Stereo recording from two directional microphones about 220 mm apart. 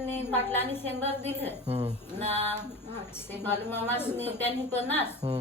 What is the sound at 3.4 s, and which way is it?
Speech, 10° left (ahead or behind).